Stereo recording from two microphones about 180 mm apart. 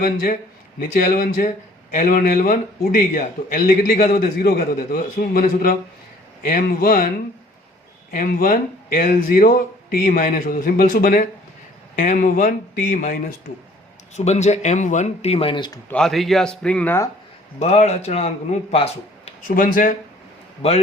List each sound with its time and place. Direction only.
0.0 s a man's voice: 50° left (ahead or behind)
1.5 s a man's voice: 40° left (ahead or behind)
8.1 s a man's voice: 50° left (ahead or behind)
14.2 s speech: 40° left (ahead or behind)
15.9 s a man's voice: 5° left (ahead or behind)
17.6 s speech: 35° left (ahead or behind)
19.5 s a man's voice: 50° left (ahead or behind)
20.6 s speech: 35° left (ahead or behind)